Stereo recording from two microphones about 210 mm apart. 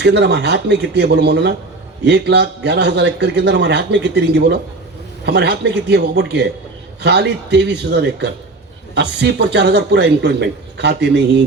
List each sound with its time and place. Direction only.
0.0 s a man's voice: 55° right (ahead or behind)